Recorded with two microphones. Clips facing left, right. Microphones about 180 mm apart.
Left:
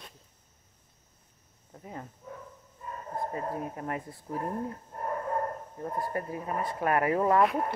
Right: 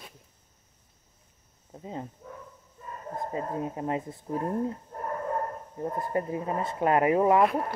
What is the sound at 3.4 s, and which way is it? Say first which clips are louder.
Speech: right 3 dB; 20° right (ahead or behind).